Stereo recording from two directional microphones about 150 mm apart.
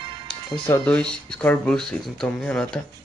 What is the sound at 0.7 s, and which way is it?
Speech, 15° left (ahead or behind).